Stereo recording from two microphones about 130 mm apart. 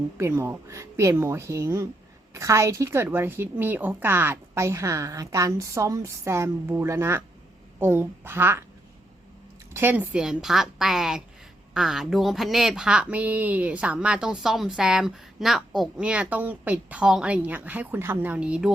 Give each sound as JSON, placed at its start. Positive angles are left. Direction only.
{"t": 0.2, "sound": "a woman's voice", "side_deg": -20}
{"t": 9.7, "sound": "a woman's voice", "side_deg": -15}